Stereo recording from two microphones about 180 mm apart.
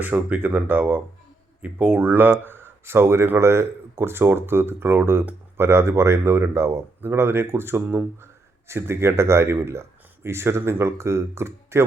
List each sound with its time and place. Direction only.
0.0 s speech: 10° right (ahead or behind)